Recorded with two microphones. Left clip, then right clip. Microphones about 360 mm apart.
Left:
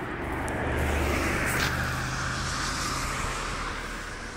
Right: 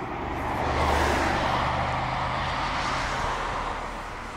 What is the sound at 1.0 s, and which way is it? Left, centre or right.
Vehicle, right.